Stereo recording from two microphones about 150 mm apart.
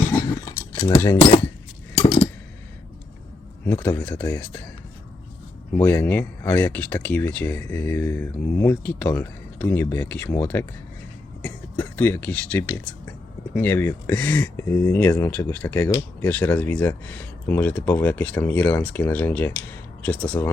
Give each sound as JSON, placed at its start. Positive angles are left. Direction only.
{"t": 0.4, "sound": "cutlery", "side_deg": 20}
{"t": 2.0, "sound": "a sound", "side_deg": 40}
{"t": 3.7, "sound": "speech", "side_deg": 15}
{"t": 5.7, "sound": "speech", "side_deg": 15}